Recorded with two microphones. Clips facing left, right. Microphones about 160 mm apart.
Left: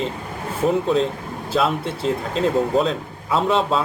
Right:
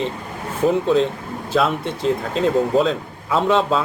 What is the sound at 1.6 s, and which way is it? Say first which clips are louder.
Speech: right 1 dB; centre (ahead or behind).